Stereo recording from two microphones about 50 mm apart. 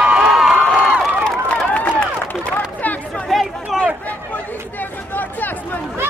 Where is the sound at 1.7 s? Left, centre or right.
Left.